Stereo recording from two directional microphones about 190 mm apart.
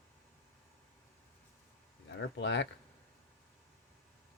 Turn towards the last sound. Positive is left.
turn(degrees=70)  # may be behind; listen again after turning